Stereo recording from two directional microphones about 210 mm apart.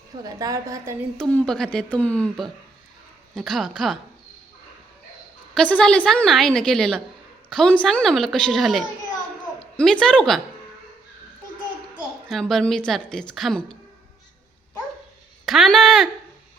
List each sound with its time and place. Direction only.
0.3 s a woman's voice: 15° right (ahead or behind)
1.2 s a woman's voice: 5° left (ahead or behind)
5.5 s a woman's voice: 5° left (ahead or behind)
12.3 s a woman's voice: centre (ahead or behind)
15.4 s a woman's voice: centre (ahead or behind)